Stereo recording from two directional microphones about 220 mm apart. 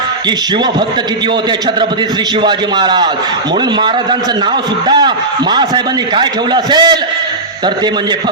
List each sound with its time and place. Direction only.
2.4 s a man's voice: 20° right (ahead or behind)
4.9 s a man's voice: 20° right (ahead or behind)